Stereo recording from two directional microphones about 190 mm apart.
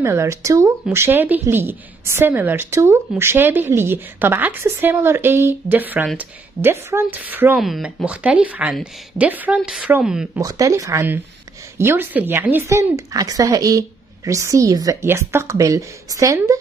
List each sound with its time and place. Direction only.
0.0 s a woman's voice: 15° right (ahead or behind)
10.4 s a woman's voice: 20° right (ahead or behind)